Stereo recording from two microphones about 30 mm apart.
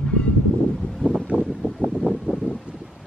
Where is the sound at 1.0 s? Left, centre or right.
Left.